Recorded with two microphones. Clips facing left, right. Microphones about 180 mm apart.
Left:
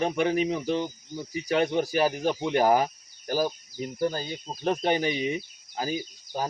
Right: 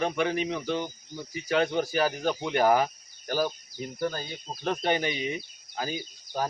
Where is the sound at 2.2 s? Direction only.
25° left (ahead or behind).